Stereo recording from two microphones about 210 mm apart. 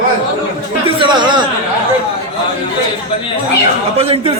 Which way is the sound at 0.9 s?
20° right (ahead or behind).